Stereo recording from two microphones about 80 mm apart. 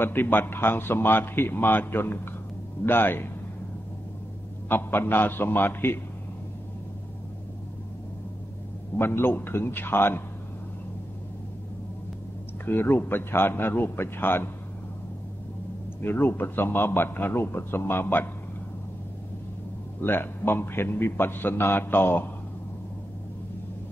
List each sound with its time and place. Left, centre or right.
0.0 s a man's voice: left
4.6 s a man's voice: left
8.9 s a man's voice: left
12.6 s a man's voice: left
16.0 s a man's voice: left
20.0 s a man's voice: left